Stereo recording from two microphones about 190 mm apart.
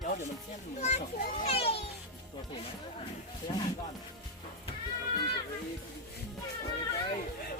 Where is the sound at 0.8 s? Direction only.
35° left (ahead or behind).